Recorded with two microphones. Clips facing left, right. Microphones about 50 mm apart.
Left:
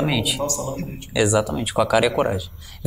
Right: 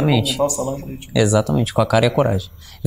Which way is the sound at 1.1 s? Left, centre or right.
Centre.